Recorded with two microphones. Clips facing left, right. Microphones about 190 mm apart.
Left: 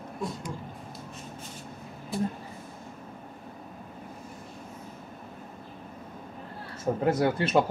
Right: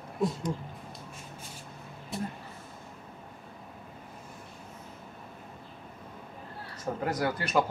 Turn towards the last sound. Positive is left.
turn(degrees=25)  # may be behind; listen again after turning